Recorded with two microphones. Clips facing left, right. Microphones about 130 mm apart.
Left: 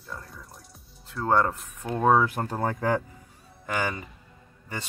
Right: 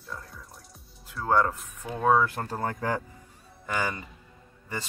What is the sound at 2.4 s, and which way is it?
Speech, 15° left (ahead or behind).